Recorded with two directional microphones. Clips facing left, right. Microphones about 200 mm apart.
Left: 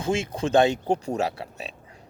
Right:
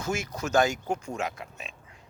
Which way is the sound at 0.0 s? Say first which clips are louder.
Left 6 dB; 30° left (ahead or behind).